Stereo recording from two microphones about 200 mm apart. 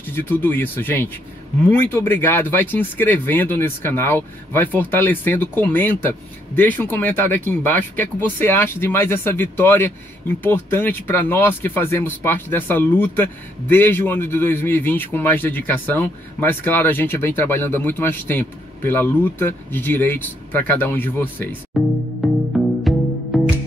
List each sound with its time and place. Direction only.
0.0 s speech: 10° left (ahead or behind)
22.9 s music: centre (ahead or behind)